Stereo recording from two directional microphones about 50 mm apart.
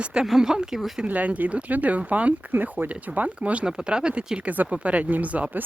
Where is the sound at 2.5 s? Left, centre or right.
Right.